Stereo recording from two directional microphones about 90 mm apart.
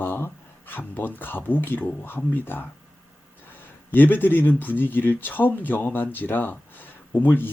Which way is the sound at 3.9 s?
20° left (ahead or behind).